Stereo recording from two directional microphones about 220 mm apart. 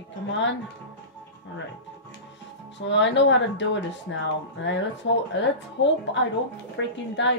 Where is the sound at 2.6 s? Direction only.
55° left (ahead or behind).